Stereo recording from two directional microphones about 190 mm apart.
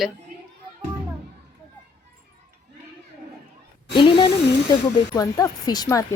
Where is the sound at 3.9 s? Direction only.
30° left (ahead or behind).